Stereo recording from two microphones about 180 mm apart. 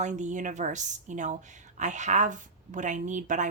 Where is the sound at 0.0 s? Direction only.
40° right (ahead or behind).